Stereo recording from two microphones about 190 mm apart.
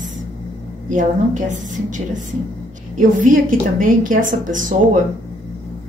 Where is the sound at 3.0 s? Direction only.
45° right (ahead or behind).